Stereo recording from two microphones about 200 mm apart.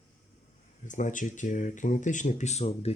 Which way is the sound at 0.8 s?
40° left (ahead or behind).